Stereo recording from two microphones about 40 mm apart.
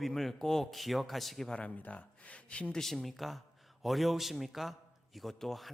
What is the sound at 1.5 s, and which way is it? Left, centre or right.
Speech, left.